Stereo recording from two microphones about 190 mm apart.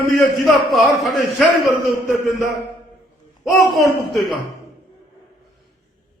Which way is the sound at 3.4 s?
Centre (ahead or behind).